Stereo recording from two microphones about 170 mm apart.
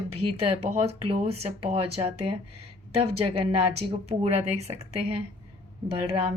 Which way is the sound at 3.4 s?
35° right (ahead or behind).